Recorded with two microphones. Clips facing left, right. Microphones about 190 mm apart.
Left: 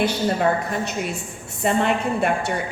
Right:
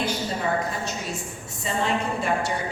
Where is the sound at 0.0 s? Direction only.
65° left (ahead or behind).